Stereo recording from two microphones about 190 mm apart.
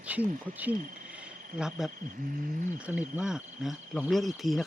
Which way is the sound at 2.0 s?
45° right (ahead or behind).